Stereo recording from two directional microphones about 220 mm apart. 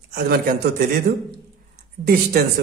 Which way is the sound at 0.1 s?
45° right (ahead or behind).